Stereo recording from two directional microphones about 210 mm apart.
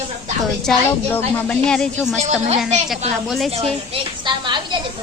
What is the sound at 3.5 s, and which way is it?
A woman's voice, 25° right (ahead or behind).